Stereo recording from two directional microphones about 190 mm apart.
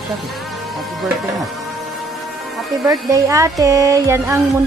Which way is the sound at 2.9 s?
15° right (ahead or behind).